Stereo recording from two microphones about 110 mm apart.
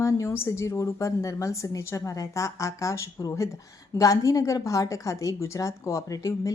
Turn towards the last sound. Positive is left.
turn(degrees=30)  # may be behind; listen again after turning